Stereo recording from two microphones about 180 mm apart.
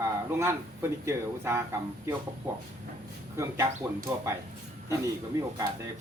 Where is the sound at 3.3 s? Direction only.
15° right (ahead or behind).